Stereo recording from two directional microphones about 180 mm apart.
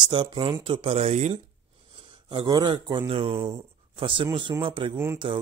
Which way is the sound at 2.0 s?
25° right (ahead or behind).